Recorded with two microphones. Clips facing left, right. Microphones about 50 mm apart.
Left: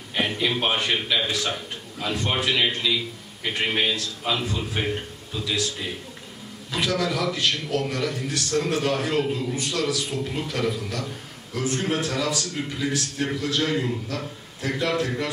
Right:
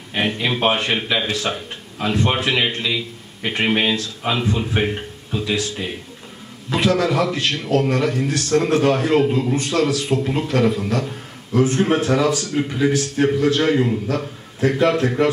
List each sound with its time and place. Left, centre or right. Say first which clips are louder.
0.1 s a man's voice: right 3 dB; right